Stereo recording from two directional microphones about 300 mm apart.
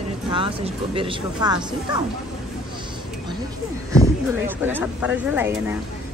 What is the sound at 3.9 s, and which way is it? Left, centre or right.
Speech, centre.